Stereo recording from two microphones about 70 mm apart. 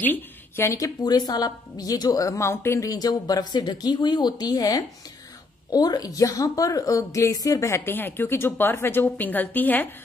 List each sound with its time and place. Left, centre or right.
0.0 s a sound: left
0.7 s a woman's voice: left
2.9 s speech: left
5.7 s a woman's voice: left
7.6 s a woman's voice: left